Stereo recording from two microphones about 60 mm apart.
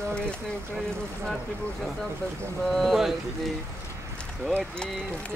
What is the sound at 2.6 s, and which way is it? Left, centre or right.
Speech, centre.